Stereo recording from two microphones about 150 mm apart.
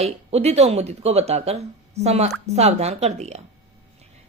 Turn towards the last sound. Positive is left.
turn(degrees=-45)  # may be behind; listen again after turning